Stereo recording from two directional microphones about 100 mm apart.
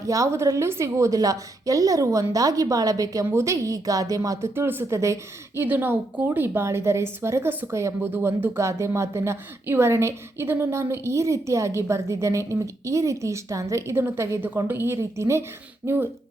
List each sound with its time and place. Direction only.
0.0 s speech: 35° right (ahead or behind)
5.6 s a woman's voice: 20° right (ahead or behind)